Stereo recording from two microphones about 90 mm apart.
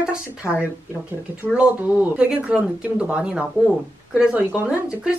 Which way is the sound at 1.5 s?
15° right (ahead or behind).